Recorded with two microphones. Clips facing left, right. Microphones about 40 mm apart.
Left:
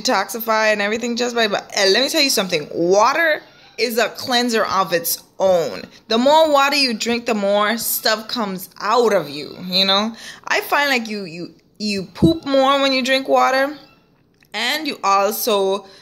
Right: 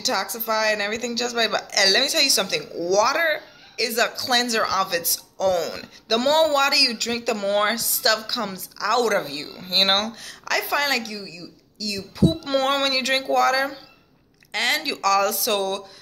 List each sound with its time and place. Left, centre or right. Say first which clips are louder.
0.0 s a woman's voice: left 6 dB; left
0.7 s speech: left 6 dB; left
2.7 s a woman's voice: left 6 dB; left
3.2 s a woman's voice: left 5 dB; left
7.4 s a woman's voice: left 4 dB; left
9.2 s a woman's voice: left 4 dB; centre
9.9 s a woman's voice: left 5 dB; left
12.2 s speech: left 6 dB; left
14.5 s a woman's voice: left 2 dB; left